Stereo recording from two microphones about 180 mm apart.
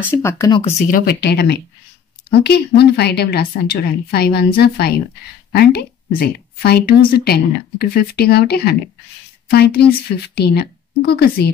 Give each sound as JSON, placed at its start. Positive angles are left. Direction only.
{"t": 0.0, "sound": "speech", "side_deg": 15}
{"t": 0.5, "sound": "speech", "side_deg": 25}
{"t": 0.9, "sound": "a woman's voice", "side_deg": 60}